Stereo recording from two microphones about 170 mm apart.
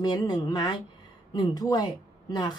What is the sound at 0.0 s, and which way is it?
Speech, 25° left (ahead or behind).